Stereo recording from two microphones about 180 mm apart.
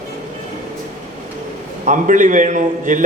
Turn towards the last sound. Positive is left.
turn(degrees=-45)  # may be behind; listen again after turning